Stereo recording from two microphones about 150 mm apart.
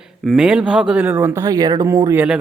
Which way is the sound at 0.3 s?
5° right (ahead or behind).